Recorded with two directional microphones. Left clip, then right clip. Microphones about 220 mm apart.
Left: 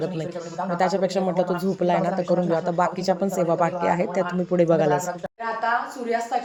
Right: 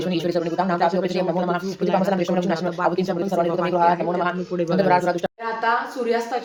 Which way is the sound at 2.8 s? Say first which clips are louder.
Even; 20° left (ahead or behind).